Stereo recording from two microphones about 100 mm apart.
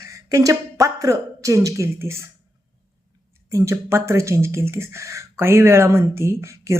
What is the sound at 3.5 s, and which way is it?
Speech, 30° right (ahead or behind).